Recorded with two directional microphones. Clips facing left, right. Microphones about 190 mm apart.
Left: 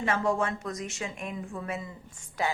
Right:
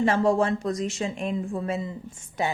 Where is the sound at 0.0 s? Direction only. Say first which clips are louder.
Right 6 dB; 30° right (ahead or behind).